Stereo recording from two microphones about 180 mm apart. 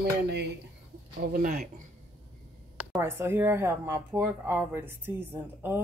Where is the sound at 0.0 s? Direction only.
70° right (ahead or behind).